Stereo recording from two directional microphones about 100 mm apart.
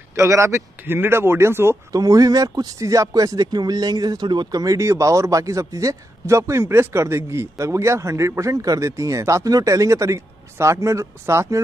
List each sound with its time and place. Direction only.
0.1 s speech: 30° right (ahead or behind)
1.9 s speech: 35° right (ahead or behind)